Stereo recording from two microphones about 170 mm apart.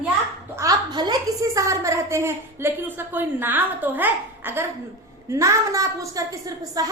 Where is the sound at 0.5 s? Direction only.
20° right (ahead or behind).